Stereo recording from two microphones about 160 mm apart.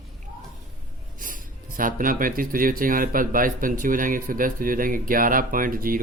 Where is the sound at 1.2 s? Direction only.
60° right (ahead or behind).